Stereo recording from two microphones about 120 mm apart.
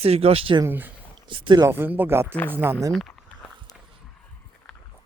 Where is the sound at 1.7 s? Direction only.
15° right (ahead or behind).